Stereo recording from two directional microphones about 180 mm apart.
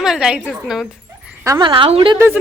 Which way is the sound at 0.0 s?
5° right (ahead or behind).